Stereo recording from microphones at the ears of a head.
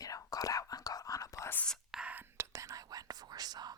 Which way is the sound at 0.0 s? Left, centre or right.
Left.